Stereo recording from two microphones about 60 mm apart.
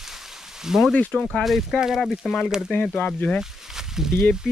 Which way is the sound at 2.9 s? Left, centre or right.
Left.